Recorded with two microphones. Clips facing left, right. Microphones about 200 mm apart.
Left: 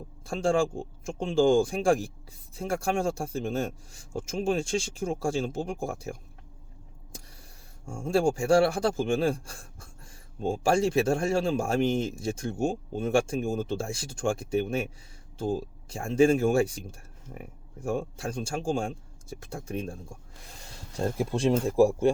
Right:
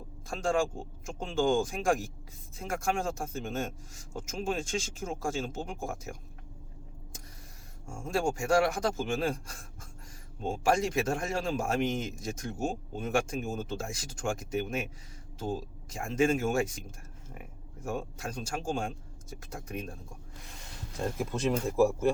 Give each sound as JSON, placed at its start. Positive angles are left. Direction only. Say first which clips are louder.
{"t": 0.3, "sound": "speech", "louder": "left 4 dB", "side_deg": 30}
{"t": 7.9, "sound": "speech", "louder": "left 6 dB", "side_deg": 30}
{"t": 15.9, "sound": "speech", "louder": "left 6 dB", "side_deg": 30}